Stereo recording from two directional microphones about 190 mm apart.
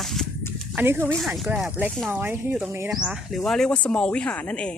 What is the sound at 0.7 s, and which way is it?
Speech, 10° right (ahead or behind).